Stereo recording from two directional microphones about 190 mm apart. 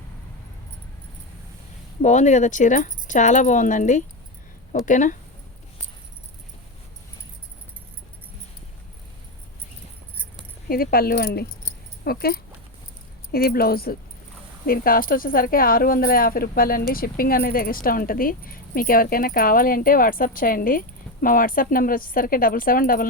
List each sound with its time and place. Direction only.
2.0 s speech: 40° left (ahead or behind)
10.7 s speech: 50° left (ahead or behind)